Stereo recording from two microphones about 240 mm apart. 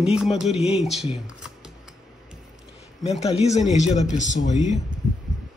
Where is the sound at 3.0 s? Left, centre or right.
Left.